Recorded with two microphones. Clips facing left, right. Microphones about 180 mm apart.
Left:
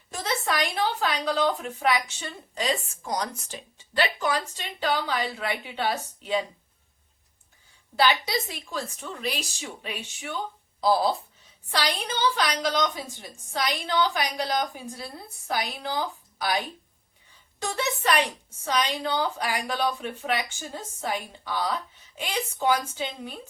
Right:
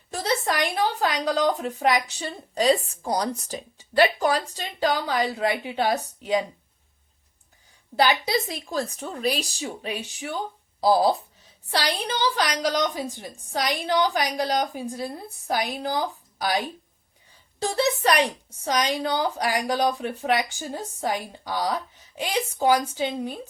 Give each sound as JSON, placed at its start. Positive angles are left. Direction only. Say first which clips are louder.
{"t": 0.1, "sound": "a sound", "louder": "right 4 dB", "side_deg": -35}
{"t": 0.7, "sound": "a woman's voice", "louder": "right 2 dB", "side_deg": -40}
{"t": 7.9, "sound": "a woman's voice", "louder": "right 2 dB", "side_deg": -35}
{"t": 17.6, "sound": "a woman's voice", "louder": "right 6 dB", "side_deg": -35}